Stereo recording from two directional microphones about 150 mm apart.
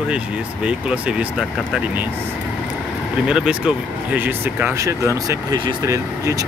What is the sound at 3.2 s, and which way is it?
Speech, 5° right (ahead or behind).